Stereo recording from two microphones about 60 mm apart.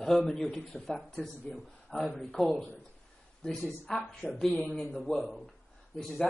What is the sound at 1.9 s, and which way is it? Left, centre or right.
Speech, centre.